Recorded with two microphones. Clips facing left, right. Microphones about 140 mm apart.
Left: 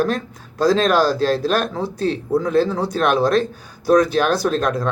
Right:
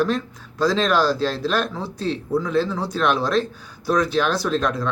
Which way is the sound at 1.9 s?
50° left (ahead or behind).